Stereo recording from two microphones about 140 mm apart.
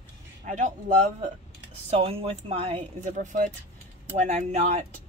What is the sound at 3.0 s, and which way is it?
A woman's voice, 65° right (ahead or behind).